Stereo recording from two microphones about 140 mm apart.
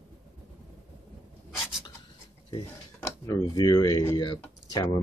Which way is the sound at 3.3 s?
25° left (ahead or behind).